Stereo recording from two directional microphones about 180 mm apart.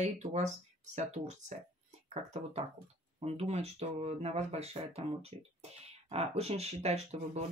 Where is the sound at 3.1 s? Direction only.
35° right (ahead or behind).